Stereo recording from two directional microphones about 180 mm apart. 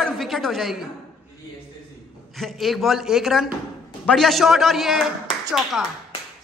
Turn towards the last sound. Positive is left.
turn(degrees=0)  # may be behind; listen again after turning